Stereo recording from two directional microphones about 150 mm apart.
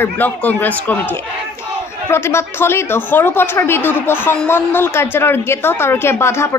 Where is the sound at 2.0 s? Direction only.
15° left (ahead or behind).